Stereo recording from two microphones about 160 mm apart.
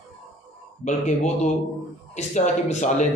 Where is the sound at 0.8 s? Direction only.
45° left (ahead or behind).